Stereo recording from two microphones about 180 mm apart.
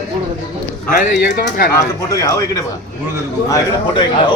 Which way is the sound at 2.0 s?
15° left (ahead or behind).